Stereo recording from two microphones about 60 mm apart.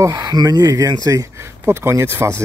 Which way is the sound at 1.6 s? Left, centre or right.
Right.